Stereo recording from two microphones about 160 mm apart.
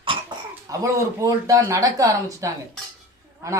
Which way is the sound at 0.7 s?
20° right (ahead or behind).